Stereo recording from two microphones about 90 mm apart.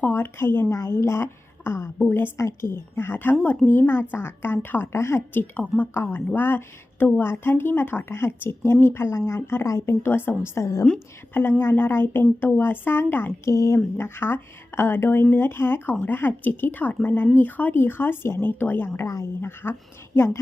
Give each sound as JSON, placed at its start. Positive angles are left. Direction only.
{"t": 0.1, "sound": "a woman's voice", "side_deg": 25}
{"t": 19.0, "sound": "a woman's voice", "side_deg": 35}
{"t": 19.4, "sound": "a woman's voice", "side_deg": 25}